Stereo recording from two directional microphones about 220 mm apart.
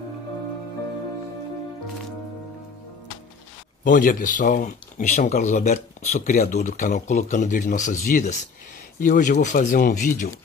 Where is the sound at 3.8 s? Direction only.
40° left (ahead or behind).